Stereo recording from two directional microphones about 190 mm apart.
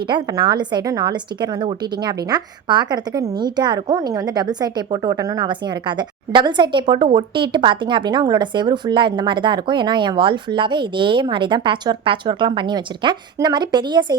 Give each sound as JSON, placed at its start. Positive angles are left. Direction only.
{"t": 0.1, "sound": "a woman's voice", "side_deg": -25}